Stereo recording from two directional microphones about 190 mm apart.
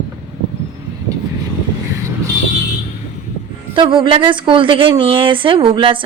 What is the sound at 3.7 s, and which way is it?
A woman's voice, 25° right (ahead or behind).